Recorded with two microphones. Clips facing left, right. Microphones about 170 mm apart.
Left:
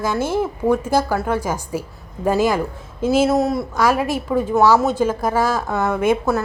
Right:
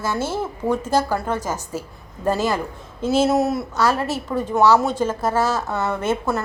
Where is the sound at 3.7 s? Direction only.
10° left (ahead or behind).